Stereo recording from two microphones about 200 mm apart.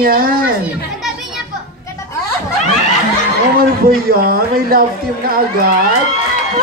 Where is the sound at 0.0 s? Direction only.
45° right (ahead or behind).